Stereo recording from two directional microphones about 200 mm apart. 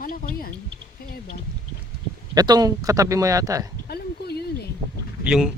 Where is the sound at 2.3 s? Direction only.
20° right (ahead or behind).